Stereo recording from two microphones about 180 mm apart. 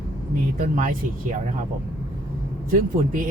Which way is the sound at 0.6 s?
50° right (ahead or behind).